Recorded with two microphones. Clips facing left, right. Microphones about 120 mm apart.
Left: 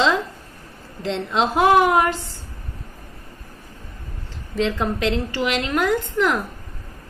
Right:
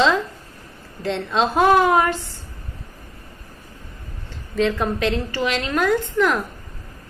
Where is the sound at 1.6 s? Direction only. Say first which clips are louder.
Even; 20° left (ahead or behind).